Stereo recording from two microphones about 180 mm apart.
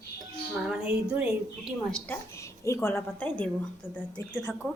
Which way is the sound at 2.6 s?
15° left (ahead or behind).